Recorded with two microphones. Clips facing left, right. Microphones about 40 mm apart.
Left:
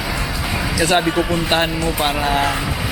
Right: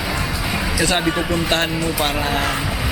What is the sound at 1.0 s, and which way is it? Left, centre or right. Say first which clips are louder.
Speech: left 2 dB; centre.